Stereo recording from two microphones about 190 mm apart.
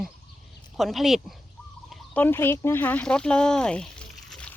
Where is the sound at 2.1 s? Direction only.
10° left (ahead or behind).